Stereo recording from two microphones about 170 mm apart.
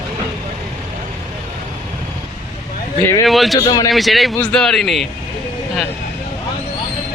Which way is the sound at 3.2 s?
Centre (ahead or behind).